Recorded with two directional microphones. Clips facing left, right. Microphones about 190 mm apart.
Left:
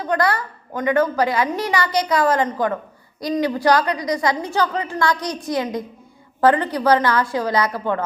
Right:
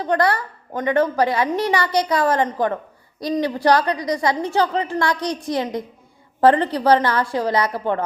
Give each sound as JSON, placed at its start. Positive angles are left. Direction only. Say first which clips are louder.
{"t": 0.0, "sound": "a woman's voice", "louder": "right 1 dB", "side_deg": -30}